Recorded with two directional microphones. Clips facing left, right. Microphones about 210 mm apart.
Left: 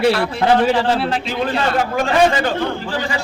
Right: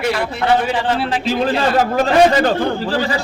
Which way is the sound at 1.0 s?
Centre (ahead or behind).